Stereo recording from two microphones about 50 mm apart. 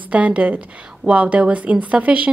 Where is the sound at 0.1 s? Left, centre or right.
Right.